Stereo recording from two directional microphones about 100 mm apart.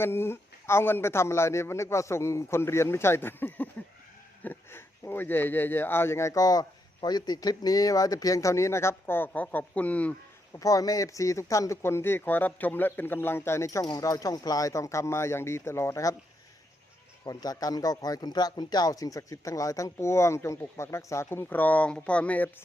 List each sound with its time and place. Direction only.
0.0 s speech: 25° left (ahead or behind)
10.5 s speech: 35° left (ahead or behind)
17.2 s speech: 40° left (ahead or behind); by 22.4 s 15° left (ahead or behind)